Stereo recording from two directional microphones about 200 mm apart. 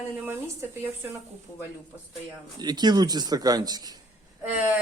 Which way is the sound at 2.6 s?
20° right (ahead or behind).